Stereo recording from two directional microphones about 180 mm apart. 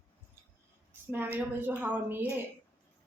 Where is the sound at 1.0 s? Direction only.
10° right (ahead or behind).